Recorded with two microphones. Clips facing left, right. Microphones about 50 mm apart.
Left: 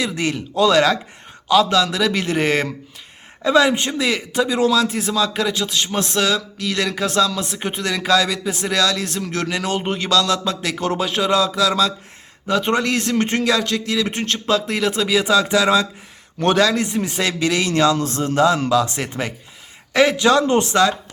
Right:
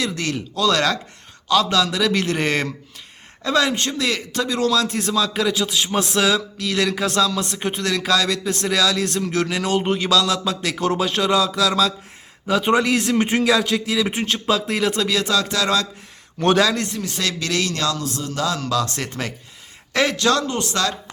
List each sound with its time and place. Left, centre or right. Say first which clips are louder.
0.0 s speech: left 2 dB; centre
0.7 s speech: left 3 dB; centre
16.4 s speech: left 1 dB; centre
16.8 s a man's voice: left 4 dB; left
17.9 s a man's voice: left 7 dB; left
18.4 s a man's voice: left 4 dB; left
20.5 s a man's voice: left 8 dB; left